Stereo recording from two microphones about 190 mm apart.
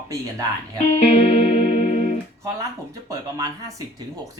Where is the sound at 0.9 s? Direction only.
35° left (ahead or behind).